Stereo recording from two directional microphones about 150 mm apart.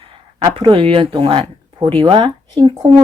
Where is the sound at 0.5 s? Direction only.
35° right (ahead or behind).